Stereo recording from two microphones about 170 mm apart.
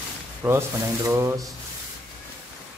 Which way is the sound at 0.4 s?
15° right (ahead or behind).